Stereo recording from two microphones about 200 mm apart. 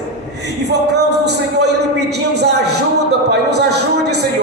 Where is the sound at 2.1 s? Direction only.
55° right (ahead or behind).